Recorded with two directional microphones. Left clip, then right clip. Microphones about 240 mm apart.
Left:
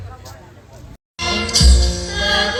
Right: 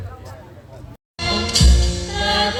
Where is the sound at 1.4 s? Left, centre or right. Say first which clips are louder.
Left 2 dB; left.